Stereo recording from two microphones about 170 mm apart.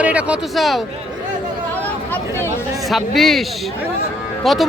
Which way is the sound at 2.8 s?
Centre (ahead or behind).